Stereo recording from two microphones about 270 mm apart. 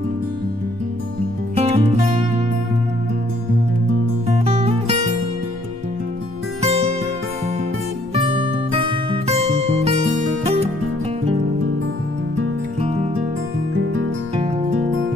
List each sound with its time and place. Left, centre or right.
1.5 s music: right
4.3 s music: right
8.1 s music: centre
14.3 s music: right